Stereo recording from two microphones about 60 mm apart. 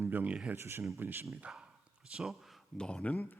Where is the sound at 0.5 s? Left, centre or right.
Right.